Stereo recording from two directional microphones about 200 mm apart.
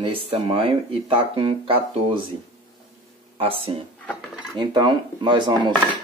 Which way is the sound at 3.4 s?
25° right (ahead or behind).